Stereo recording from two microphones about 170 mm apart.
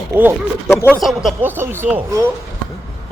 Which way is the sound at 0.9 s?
Centre (ahead or behind).